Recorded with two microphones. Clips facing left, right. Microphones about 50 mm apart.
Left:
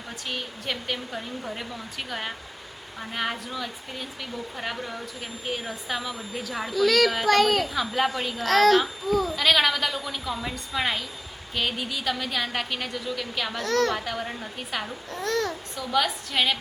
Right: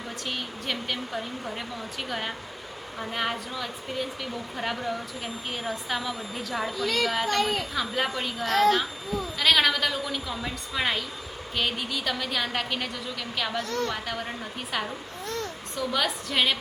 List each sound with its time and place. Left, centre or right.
0.3 s a woman's voice: centre
6.7 s a child's voice: left
7.7 s a woman's voice: centre
8.4 s a woman's voice: left
9.4 s a woman's voice: centre
13.7 s a woman's voice: left
13.9 s a woman's voice: centre
15.2 s a child's voice: left
15.7 s a woman's voice: centre